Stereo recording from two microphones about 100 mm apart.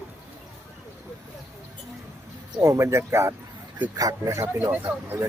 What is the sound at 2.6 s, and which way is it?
Speech, 30° right (ahead or behind).